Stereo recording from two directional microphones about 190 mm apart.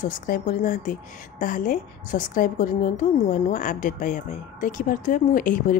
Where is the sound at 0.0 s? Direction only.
45° left (ahead or behind).